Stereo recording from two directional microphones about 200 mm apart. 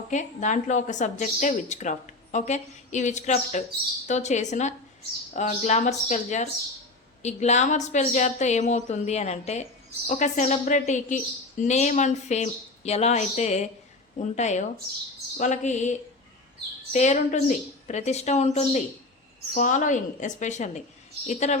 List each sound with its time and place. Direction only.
0.1 s a woman's voice: 35° left (ahead or behind)